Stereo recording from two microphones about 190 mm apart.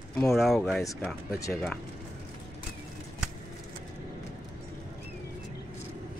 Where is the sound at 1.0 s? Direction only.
15° left (ahead or behind).